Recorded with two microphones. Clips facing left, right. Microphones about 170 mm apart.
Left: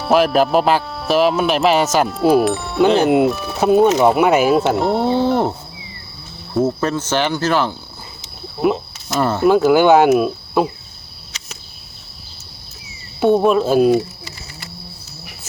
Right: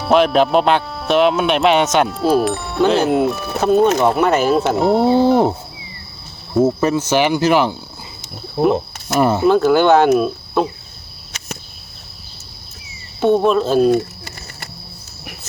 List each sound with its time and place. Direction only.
0.0 s speech: centre (ahead or behind); by 7.8 s 15° right (ahead or behind)
9.1 s speech: 15° right (ahead or behind)
9.5 s speech: 10° left (ahead or behind)
11.3 s a sound: 55° right (ahead or behind)
13.1 s speech: 5° left (ahead or behind)